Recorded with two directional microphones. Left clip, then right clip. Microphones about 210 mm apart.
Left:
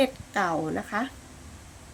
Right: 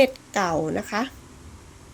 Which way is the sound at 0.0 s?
20° right (ahead or behind).